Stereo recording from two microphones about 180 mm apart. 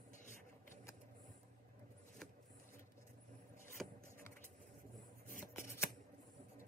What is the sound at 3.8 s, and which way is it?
Vehicle, centre (ahead or behind).